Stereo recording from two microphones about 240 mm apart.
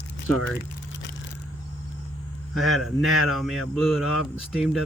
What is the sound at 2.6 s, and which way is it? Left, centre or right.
Speech, centre.